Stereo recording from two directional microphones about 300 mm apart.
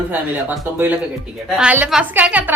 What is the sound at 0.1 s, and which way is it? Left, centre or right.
Speech, centre.